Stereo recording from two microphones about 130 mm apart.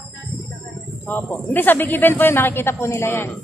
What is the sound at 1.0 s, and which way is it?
Speech, 15° left (ahead or behind).